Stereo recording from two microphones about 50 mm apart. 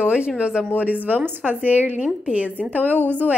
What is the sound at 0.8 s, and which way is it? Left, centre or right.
A woman's voice, right.